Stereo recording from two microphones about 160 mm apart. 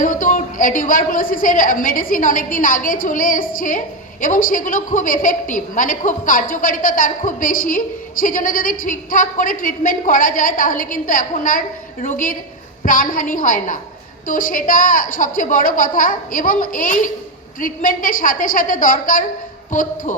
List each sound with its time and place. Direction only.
0.0 s a woman's voice: 55° left (ahead or behind)